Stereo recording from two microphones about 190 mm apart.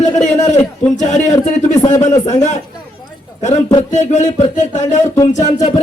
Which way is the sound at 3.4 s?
40° left (ahead or behind).